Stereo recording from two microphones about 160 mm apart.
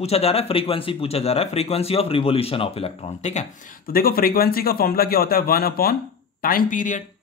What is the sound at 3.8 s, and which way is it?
A man's voice, 65° left (ahead or behind).